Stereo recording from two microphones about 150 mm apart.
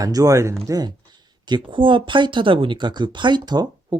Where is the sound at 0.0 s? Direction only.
25° right (ahead or behind).